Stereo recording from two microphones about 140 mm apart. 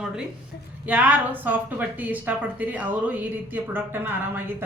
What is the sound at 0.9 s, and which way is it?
A woman's voice, 10° right (ahead or behind).